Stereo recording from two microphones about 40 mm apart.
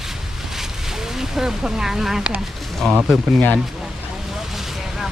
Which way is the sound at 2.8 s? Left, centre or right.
Left.